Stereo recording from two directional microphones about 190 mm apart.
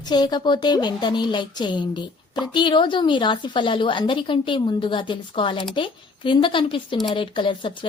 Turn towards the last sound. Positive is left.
turn(degrees=25)  # may be behind; listen again after turning